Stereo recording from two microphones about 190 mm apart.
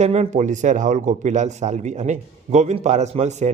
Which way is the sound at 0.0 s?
35° right (ahead or behind).